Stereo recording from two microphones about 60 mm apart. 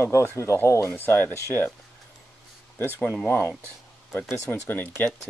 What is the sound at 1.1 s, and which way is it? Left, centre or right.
Speech, left.